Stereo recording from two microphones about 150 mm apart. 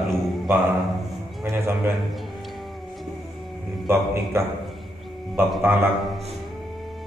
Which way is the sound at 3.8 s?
15° right (ahead or behind).